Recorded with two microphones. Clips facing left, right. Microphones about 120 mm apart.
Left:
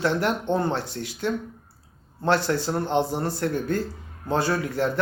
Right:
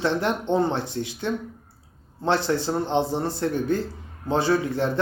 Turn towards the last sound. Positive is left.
turn(degrees=-20)  # may be behind; listen again after turning